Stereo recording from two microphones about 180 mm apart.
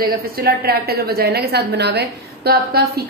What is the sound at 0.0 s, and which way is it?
A woman's voice, 60° right (ahead or behind).